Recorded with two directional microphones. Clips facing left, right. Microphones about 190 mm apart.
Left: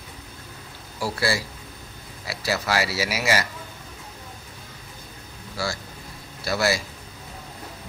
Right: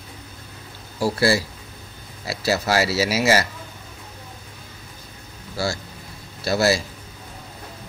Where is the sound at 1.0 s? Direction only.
30° right (ahead or behind).